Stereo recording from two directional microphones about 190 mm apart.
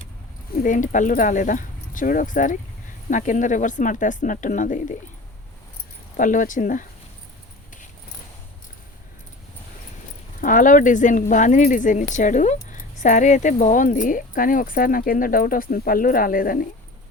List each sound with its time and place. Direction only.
0.5 s speech: 45° left (ahead or behind)
6.1 s speech: 45° left (ahead or behind)
10.4 s speech: 45° left (ahead or behind)